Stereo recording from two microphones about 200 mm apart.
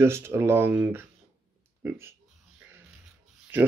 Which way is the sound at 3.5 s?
10° right (ahead or behind).